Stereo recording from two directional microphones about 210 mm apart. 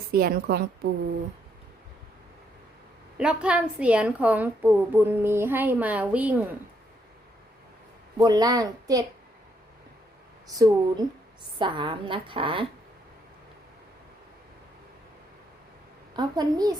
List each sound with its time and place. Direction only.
0.1 s a woman's voice: 45° right (ahead or behind)
3.2 s a woman's voice: 5° right (ahead or behind)
8.2 s a woman's voice: 20° right (ahead or behind)
10.6 s a woman's voice: 15° right (ahead or behind)
16.1 s a woman's voice: 20° right (ahead or behind)